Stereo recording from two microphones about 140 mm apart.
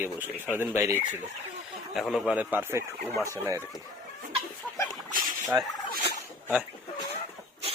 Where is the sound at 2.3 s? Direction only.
15° right (ahead or behind).